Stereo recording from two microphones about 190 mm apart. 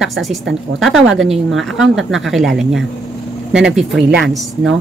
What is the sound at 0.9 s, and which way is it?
Speech, 85° right.